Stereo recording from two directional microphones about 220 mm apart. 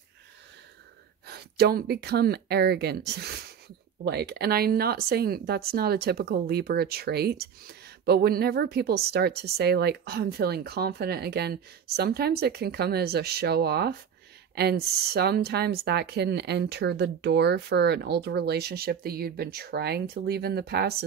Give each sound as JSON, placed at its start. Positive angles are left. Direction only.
{"t": 1.2, "sound": "speech", "side_deg": -45}